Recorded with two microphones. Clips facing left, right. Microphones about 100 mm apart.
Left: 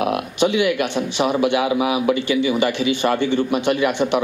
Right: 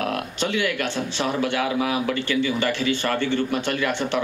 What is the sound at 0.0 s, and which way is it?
Speech, 15° left (ahead or behind).